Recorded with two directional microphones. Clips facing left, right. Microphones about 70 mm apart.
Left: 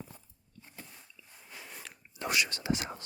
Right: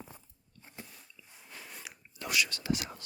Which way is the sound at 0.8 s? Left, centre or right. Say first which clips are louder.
Right 2 dB; centre.